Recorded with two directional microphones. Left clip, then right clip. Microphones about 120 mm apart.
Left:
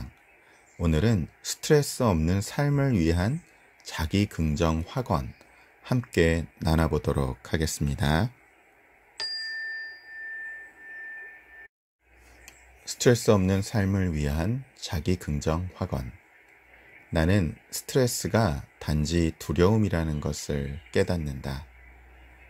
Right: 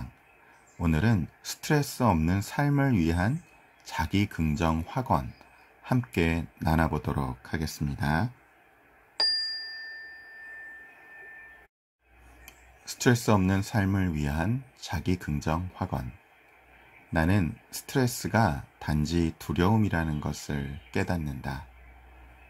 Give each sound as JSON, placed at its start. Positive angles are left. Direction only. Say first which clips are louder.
{"t": 0.7, "sound": "speech", "louder": "left 2 dB", "side_deg": 55}
{"t": 12.4, "sound": "speech", "louder": "left 3 dB", "side_deg": 50}
{"t": 17.1, "sound": "speech", "louder": "left 2 dB", "side_deg": 60}